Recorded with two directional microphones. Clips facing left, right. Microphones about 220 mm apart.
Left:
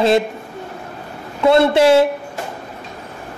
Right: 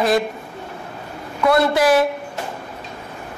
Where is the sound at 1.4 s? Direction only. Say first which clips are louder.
Left 4 dB; 25° left (ahead or behind).